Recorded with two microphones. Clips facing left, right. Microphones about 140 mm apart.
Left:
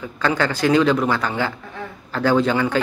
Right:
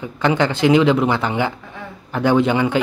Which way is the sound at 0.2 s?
20° right (ahead or behind).